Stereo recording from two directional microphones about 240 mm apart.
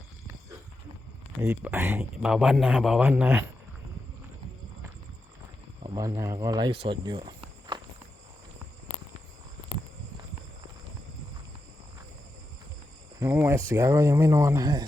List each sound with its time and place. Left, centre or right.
1.4 s speech: centre
5.8 s speech: centre
6.8 s cricket: centre
13.1 s speech: centre